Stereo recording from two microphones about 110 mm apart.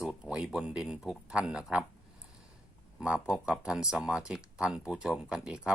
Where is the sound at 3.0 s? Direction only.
10° right (ahead or behind).